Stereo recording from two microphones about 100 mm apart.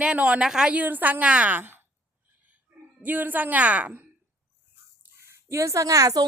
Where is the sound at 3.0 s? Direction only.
15° right (ahead or behind).